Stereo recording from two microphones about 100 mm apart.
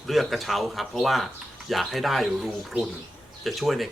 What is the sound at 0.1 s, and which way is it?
Speech, centre (ahead or behind).